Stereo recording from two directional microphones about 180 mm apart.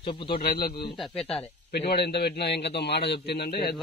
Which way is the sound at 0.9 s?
Centre (ahead or behind).